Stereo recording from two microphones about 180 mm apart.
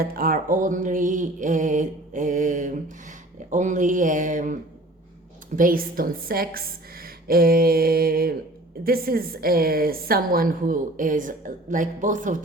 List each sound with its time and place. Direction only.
0.0 s a woman's voice: 55° right (ahead or behind)
5.5 s a woman's voice: 50° right (ahead or behind)